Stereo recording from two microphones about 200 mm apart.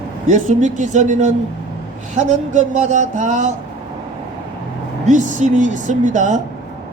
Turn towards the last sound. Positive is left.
turn(degrees=-40)  # may be behind; listen again after turning